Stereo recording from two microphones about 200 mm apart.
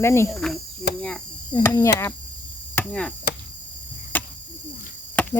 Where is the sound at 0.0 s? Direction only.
15° left (ahead or behind).